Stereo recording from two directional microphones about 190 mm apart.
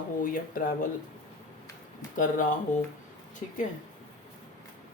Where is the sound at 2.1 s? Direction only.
40° left (ahead or behind).